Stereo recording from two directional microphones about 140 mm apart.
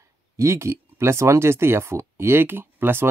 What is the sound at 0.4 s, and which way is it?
Speech, 20° right (ahead or behind).